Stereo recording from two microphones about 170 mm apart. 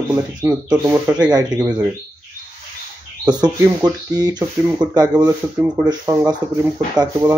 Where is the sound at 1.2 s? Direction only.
25° right (ahead or behind).